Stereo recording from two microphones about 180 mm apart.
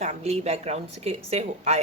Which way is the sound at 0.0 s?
40° right (ahead or behind).